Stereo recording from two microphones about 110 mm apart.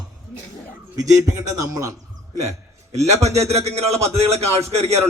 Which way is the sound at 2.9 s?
80° right.